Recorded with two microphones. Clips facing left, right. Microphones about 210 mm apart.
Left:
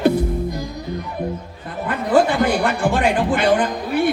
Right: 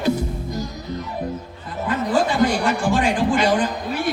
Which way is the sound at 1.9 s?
60° left (ahead or behind).